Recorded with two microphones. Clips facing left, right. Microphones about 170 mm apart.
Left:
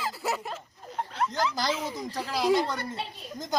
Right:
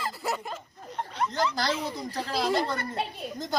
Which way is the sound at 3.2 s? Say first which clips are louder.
Right 4 dB; 60° right (ahead or behind).